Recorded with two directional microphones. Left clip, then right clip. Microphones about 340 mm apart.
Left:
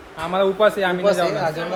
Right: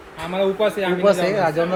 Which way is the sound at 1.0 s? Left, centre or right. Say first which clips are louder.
Right 4 dB; right.